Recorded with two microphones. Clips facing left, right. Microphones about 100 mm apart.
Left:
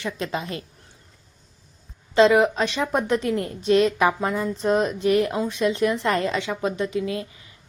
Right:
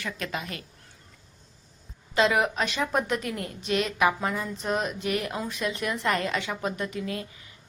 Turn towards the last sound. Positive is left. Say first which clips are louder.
# left 6 dB
turn(degrees=25)  # may be behind; listen again after turning